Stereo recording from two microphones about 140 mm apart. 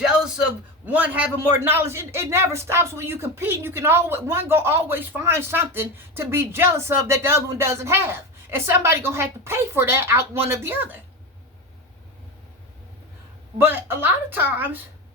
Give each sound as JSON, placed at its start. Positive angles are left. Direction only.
{"t": 0.0, "sound": "a sound", "side_deg": -5}
{"t": 0.9, "sound": "a man's voice", "side_deg": -10}
{"t": 13.6, "sound": "a man's voice", "side_deg": -15}